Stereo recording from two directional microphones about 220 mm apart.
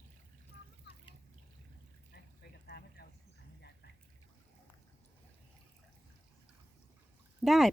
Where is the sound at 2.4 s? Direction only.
45° left (ahead or behind).